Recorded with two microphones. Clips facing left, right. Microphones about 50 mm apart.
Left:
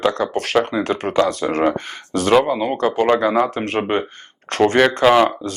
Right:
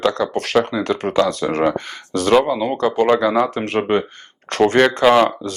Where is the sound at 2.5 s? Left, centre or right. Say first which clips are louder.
Even; left.